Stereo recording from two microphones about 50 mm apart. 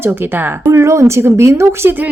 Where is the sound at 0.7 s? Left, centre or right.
Right.